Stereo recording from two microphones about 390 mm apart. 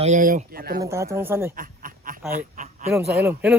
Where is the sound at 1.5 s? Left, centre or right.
Right.